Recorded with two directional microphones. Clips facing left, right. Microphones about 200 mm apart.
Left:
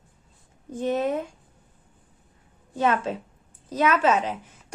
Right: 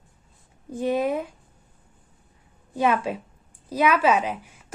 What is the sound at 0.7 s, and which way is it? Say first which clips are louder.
Speech: right 1 dB; 10° right (ahead or behind).